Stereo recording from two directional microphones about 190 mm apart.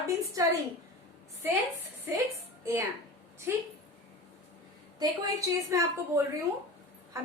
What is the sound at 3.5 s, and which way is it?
Speech, 10° right (ahead or behind).